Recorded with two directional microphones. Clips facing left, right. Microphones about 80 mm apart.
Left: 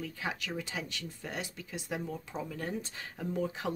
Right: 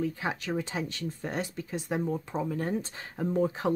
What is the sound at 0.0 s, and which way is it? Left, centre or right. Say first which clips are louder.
Speech: right 6 dB; right.